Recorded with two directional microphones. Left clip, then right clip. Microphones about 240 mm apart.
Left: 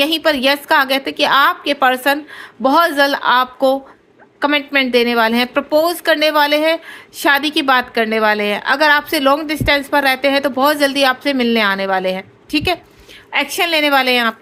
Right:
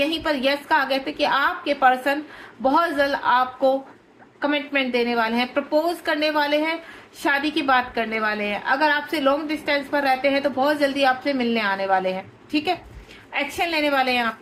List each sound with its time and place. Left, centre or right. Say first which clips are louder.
0.0 s a woman's voice: left 8 dB; left